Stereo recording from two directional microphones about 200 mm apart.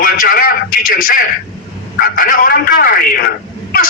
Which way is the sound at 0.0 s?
45° left (ahead or behind).